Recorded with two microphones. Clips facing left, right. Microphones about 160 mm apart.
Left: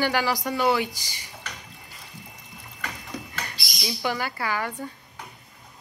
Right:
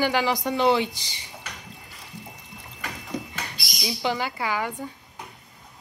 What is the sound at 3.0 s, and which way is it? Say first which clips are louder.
Bird: right 3 dB; 20° right (ahead or behind).